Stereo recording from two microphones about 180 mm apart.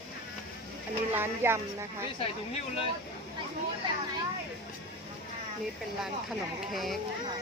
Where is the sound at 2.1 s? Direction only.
30° left (ahead or behind).